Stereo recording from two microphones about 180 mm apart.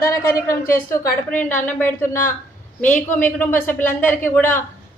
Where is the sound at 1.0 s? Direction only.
45° left (ahead or behind).